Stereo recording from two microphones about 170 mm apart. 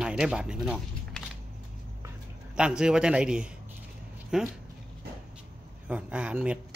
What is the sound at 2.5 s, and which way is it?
A man's voice, 5° right (ahead or behind).